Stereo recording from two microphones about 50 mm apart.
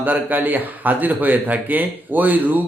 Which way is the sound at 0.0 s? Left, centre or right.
Right.